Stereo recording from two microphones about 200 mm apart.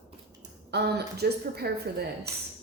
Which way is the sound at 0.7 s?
55° right (ahead or behind).